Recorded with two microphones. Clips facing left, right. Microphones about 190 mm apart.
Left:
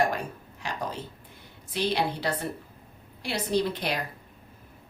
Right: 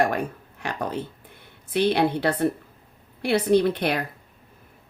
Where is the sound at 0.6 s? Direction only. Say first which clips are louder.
Right 5 dB; 60° right (ahead or behind).